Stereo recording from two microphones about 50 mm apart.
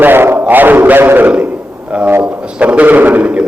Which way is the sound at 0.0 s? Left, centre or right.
Right.